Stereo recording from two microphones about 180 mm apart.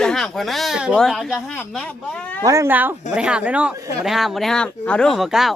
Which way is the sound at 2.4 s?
15° right (ahead or behind).